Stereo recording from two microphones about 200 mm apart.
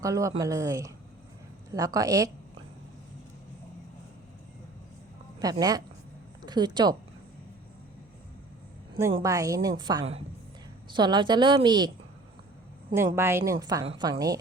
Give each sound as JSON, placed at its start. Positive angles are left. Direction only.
{"t": 0.0, "sound": "a woman's voice", "side_deg": -15}
{"t": 5.4, "sound": "a woman's voice", "side_deg": -20}
{"t": 9.1, "sound": "a woman's voice", "side_deg": -15}
{"t": 12.9, "sound": "a woman's voice", "side_deg": -10}